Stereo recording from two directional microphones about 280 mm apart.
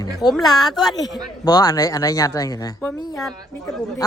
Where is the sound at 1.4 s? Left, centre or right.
Centre.